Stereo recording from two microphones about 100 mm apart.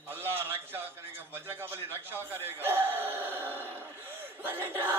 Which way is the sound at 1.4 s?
25° right (ahead or behind).